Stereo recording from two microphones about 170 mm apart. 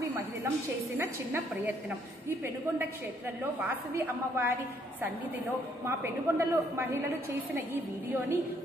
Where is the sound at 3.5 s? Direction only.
10° right (ahead or behind).